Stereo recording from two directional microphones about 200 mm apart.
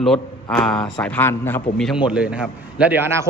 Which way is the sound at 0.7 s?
20° left (ahead or behind).